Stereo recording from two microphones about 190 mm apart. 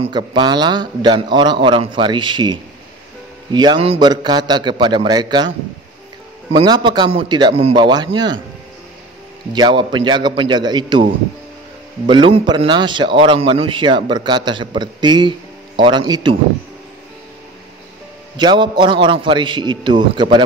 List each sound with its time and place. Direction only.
0.0 s a man's voice: 25° right (ahead or behind)
6.5 s a man's voice: 25° right (ahead or behind)
9.5 s a man's voice: 25° right (ahead or behind)
12.1 s a man's voice: 25° right (ahead or behind)
18.3 s a man's voice: 25° right (ahead or behind)